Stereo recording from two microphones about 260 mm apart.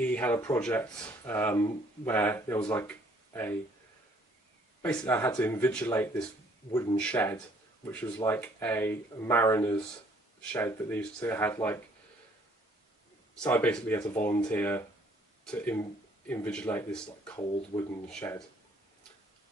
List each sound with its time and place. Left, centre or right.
0.0 s speech: centre
4.8 s speech: centre
13.4 s speech: centre
17.4 s speech: centre
18.0 s speech: centre